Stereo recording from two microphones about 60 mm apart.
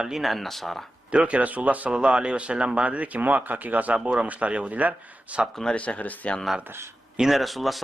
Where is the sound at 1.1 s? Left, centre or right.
Right.